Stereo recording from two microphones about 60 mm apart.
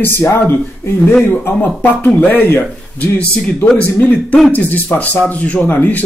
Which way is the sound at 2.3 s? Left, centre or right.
Left.